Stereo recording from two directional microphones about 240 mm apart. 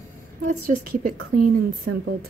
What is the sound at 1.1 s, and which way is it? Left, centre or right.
Speech, right.